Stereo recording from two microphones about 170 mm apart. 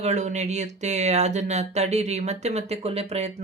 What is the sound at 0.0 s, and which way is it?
Speech, 45° right (ahead or behind).